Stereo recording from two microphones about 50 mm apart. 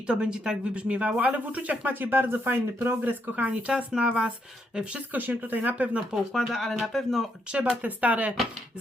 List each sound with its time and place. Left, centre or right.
0.1 s speech: right
3.5 s speech: centre
5.1 s speech: right
6.3 s speech: centre
7.8 s speech: right